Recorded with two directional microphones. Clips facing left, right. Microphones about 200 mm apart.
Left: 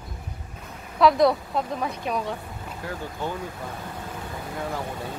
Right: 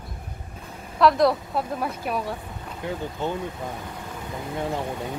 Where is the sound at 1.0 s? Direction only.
Centre (ahead or behind).